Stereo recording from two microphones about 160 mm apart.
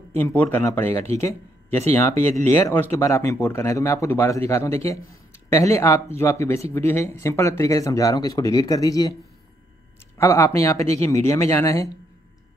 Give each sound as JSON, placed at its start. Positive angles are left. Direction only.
{"t": 0.1, "sound": "speech", "side_deg": 10}